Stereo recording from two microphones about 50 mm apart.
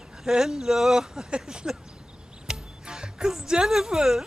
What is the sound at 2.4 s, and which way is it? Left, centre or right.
Music, centre.